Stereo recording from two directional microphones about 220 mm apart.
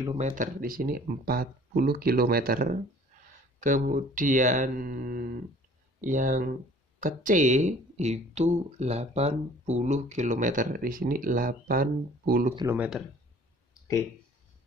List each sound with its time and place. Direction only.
0.2 s speech: 40° right (ahead or behind)
12.5 s speech: 10° right (ahead or behind)